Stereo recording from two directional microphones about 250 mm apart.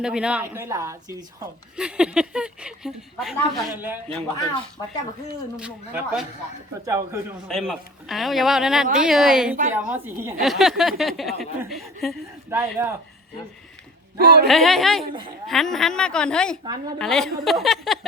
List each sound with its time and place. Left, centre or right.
0.0 s speech: centre
5.5 s speech: centre
7.4 s speech: centre
14.2 s speech: right
14.4 s speech: centre
16.6 s speech: centre
17.0 s speech: centre